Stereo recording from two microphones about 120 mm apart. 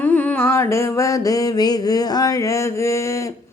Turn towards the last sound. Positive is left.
turn(degrees=25)  # may be behind; listen again after turning